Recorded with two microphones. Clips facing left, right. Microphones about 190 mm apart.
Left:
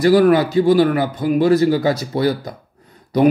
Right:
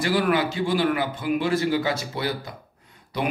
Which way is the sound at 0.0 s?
40° left (ahead or behind).